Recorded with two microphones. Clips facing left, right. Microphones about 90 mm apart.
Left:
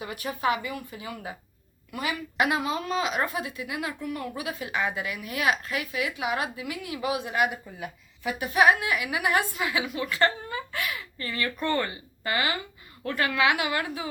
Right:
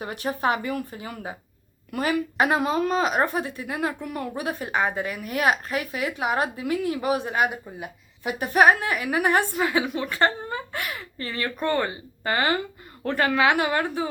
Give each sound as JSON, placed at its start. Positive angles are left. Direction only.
{"t": 0.0, "sound": "a woman's voice", "side_deg": -40}
{"t": 7.8, "sound": "speech", "side_deg": -25}
{"t": 8.4, "sound": "a woman's voice", "side_deg": -40}
{"t": 10.5, "sound": "a sound", "side_deg": -40}
{"t": 11.6, "sound": "speech", "side_deg": -20}
{"t": 12.2, "sound": "a woman's voice", "side_deg": -40}